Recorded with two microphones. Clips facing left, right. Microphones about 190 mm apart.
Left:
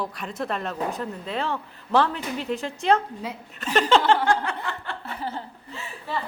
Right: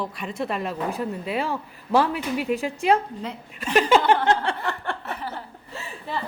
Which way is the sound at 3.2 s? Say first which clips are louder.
Right 1 dB; centre (ahead or behind).